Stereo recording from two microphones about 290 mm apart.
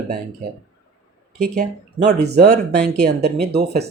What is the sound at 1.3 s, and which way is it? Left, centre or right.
Speech, right.